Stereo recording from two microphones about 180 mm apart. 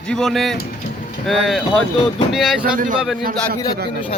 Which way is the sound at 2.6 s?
50° right (ahead or behind).